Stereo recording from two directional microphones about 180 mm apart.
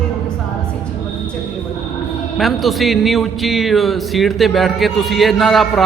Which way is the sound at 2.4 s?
Centre (ahead or behind).